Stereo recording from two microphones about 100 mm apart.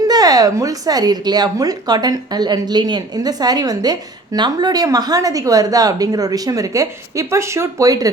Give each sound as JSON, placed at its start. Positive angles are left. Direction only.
{"t": 0.1, "sound": "speech", "side_deg": -40}